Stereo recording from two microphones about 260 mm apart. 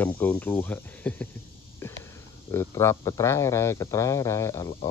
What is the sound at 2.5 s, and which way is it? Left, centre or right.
Speech, centre.